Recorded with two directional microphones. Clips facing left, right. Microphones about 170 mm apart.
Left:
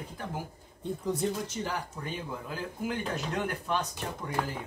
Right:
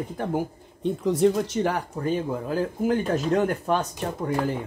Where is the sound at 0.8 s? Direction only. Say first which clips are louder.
Right 10 dB; 90° right; by 4.3 s 45° right (ahead or behind).